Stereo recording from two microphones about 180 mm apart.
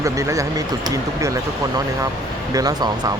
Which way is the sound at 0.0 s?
15° right (ahead or behind).